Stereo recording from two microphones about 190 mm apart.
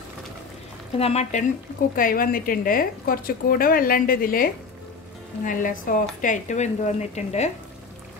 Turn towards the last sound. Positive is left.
turn(degrees=35)  # may be behind; listen again after turning